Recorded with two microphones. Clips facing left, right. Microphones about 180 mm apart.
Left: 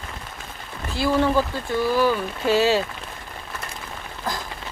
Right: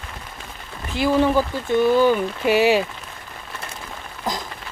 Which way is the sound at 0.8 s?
15° right (ahead or behind).